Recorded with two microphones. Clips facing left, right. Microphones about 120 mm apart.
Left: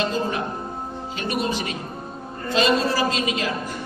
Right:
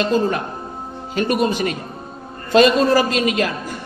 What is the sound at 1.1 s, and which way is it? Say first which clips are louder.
A woman's voice: right 7 dB; 50° right (ahead or behind).